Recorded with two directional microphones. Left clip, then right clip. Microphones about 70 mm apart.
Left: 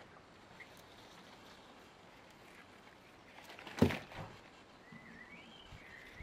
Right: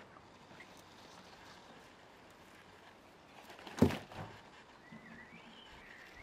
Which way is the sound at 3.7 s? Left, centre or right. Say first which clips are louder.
Right 1 dB; right.